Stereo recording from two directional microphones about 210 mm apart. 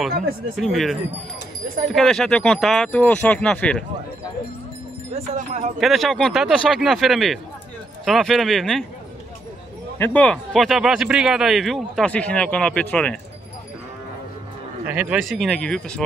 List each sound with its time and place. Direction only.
0.6 s speech: centre (ahead or behind)
5.1 s speech: 35° right (ahead or behind)
5.8 s speech: centre (ahead or behind)
9.9 s speech: 10° left (ahead or behind)
14.9 s speech: 5° right (ahead or behind)